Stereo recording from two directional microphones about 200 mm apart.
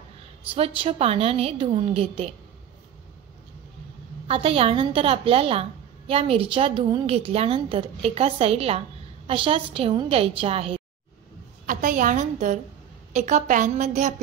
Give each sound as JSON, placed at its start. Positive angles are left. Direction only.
{"t": 0.6, "sound": "a woman's voice", "side_deg": -30}
{"t": 4.3, "sound": "a woman's voice", "side_deg": -30}
{"t": 11.6, "sound": "a woman's voice", "side_deg": -40}